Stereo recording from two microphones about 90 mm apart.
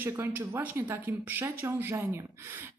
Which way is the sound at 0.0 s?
25° right (ahead or behind).